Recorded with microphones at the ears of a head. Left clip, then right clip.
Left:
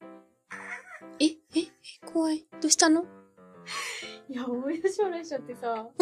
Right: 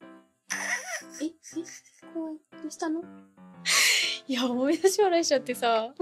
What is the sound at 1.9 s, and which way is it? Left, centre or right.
Music, left.